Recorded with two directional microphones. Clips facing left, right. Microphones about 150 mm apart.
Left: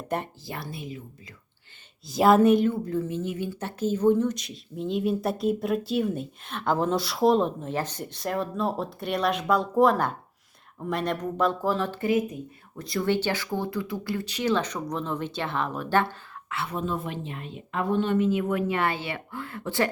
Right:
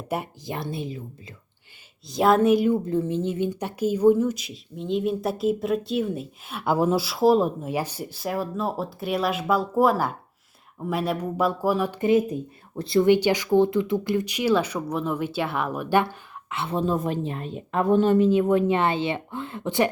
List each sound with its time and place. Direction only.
0.1 s speech: 10° right (ahead or behind)
0.4 s a woman's voice: 20° right (ahead or behind)
2.0 s speech: centre (ahead or behind)
2.6 s speech: 20° right (ahead or behind)
12.1 s speech: 30° right (ahead or behind)
13.1 s speech: 15° right (ahead or behind)
16.5 s a woman's voice: 25° right (ahead or behind)